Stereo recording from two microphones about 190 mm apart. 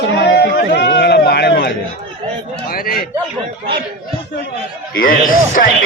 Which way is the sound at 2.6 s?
50° left (ahead or behind).